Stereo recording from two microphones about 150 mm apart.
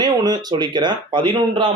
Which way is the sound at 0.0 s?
30° right (ahead or behind).